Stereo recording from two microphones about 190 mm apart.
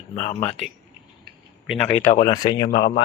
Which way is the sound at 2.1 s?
25° left (ahead or behind).